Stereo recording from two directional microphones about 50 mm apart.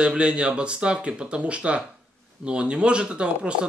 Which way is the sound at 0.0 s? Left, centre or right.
Centre.